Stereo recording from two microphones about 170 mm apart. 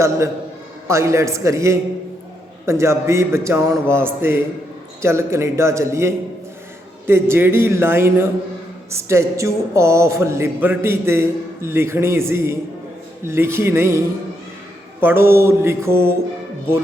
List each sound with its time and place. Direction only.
0.9 s a woman's voice: 15° right (ahead or behind)
15.0 s a woman's voice: 15° right (ahead or behind)